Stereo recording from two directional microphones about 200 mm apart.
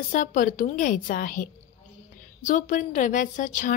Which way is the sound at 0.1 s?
40° left (ahead or behind).